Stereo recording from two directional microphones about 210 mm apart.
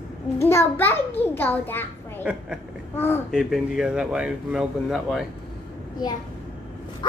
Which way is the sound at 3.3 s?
Centre (ahead or behind).